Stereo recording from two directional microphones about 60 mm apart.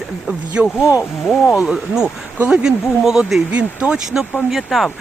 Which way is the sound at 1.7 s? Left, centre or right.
Centre.